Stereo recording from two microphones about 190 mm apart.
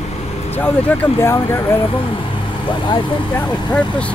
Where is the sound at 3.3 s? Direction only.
5° left (ahead or behind).